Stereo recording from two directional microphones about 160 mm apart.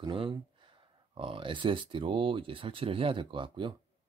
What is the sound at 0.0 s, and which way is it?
Speech, 30° right (ahead or behind).